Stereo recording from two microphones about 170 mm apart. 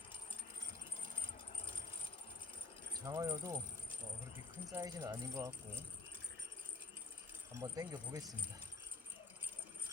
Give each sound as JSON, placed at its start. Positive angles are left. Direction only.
{"t": 3.1, "sound": "speech", "side_deg": -15}
{"t": 4.7, "sound": "speech", "side_deg": -20}
{"t": 7.6, "sound": "speech", "side_deg": -20}